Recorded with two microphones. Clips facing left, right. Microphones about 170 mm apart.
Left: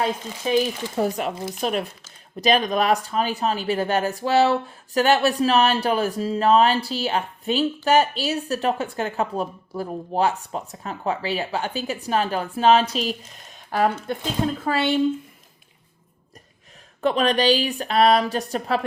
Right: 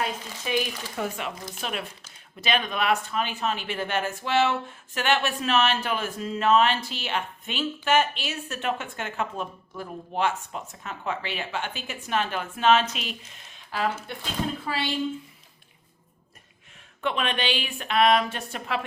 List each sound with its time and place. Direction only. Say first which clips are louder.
0.0 s speech: left 6 dB; 35° left (ahead or behind)
13.7 s speech: left 7 dB; 55° left (ahead or behind)
17.0 s speech: left 8 dB; 35° left (ahead or behind)